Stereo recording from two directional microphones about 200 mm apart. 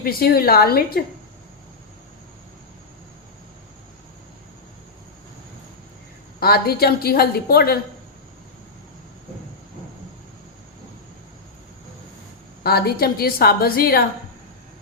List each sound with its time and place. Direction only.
0.0 s a woman's voice: 50° left (ahead or behind)
6.4 s a woman's voice: 50° left (ahead or behind)
12.6 s a woman's voice: 50° left (ahead or behind)